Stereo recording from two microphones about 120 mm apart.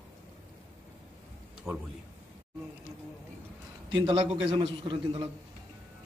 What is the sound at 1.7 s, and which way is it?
Speech, 25° right (ahead or behind).